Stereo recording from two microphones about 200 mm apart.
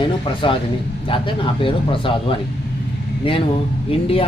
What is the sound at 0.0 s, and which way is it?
Speech, 25° left (ahead or behind).